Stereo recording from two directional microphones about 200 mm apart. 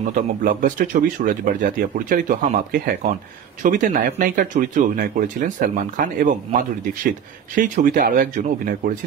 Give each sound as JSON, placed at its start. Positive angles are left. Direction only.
{"t": 0.1, "sound": "speech", "side_deg": -40}